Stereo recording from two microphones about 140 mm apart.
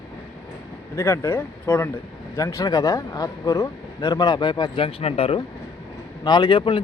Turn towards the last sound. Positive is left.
turn(degrees=35)  # may be behind; listen again after turning